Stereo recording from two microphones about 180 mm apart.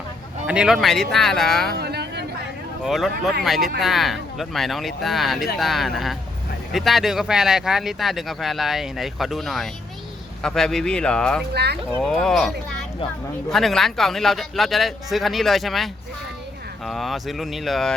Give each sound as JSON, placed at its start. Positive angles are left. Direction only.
{"t": 0.4, "sound": "speech", "side_deg": -5}
{"t": 1.7, "sound": "a sound", "side_deg": -65}
{"t": 2.8, "sound": "speech", "side_deg": 0}
{"t": 11.5, "sound": "speech", "side_deg": -65}
{"t": 11.9, "sound": "speech", "side_deg": 5}